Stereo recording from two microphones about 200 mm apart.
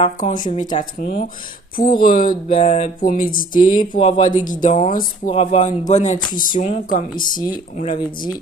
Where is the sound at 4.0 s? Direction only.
25° left (ahead or behind).